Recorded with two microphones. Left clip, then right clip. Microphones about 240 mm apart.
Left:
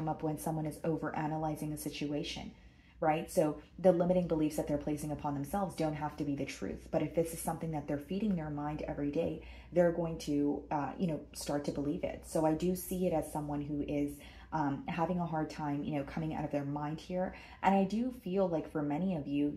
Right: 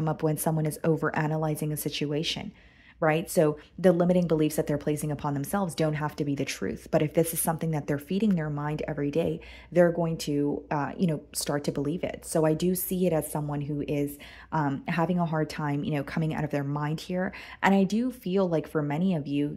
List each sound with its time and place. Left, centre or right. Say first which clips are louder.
0.0 s a woman's voice: right 8 dB; right